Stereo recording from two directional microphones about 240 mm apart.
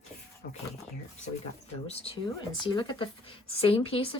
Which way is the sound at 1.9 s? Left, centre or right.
Left.